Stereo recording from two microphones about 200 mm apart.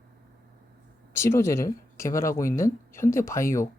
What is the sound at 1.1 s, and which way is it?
Speech, 15° left (ahead or behind).